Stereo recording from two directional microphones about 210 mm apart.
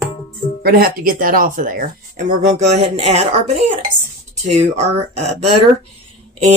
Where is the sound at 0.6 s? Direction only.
45° right (ahead or behind).